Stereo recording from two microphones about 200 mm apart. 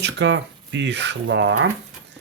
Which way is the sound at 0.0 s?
65° right (ahead or behind).